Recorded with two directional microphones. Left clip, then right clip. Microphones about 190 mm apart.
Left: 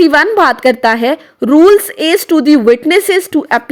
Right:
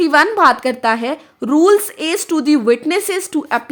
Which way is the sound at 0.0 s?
25° left (ahead or behind).